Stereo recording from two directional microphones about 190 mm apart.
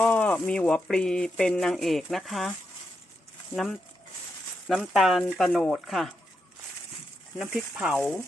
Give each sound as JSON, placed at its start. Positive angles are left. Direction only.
{"t": 0.0, "sound": "speech", "side_deg": 5}
{"t": 3.5, "sound": "speech", "side_deg": 0}
{"t": 7.3, "sound": "speech", "side_deg": -5}